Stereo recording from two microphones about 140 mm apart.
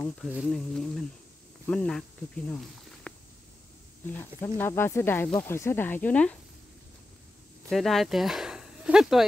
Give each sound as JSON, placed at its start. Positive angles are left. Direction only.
{"t": 0.5, "sound": "speech", "side_deg": 5}
{"t": 4.1, "sound": "speech", "side_deg": 15}
{"t": 7.7, "sound": "speech", "side_deg": 0}